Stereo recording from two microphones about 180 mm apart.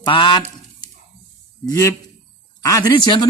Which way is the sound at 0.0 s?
25° left (ahead or behind).